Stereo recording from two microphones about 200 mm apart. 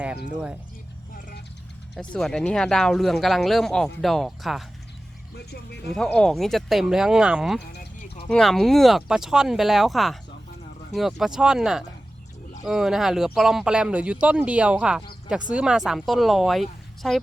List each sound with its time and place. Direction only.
2.0 s speech: 5° left (ahead or behind)
5.3 s speech: 55° left (ahead or behind)
5.9 s speech: 5° left (ahead or behind)